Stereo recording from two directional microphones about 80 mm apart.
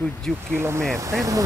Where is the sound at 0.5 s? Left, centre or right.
Right.